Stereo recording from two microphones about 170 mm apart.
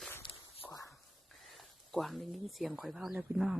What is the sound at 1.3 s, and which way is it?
Speech, centre (ahead or behind).